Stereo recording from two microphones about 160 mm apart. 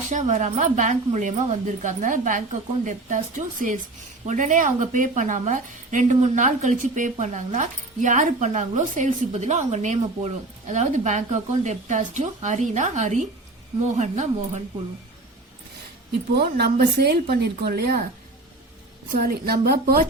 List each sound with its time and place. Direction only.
0.1 s a woman's voice: 50° right (ahead or behind)
16.6 s a woman's voice: 75° right (ahead or behind)
19.1 s speech: 65° right (ahead or behind)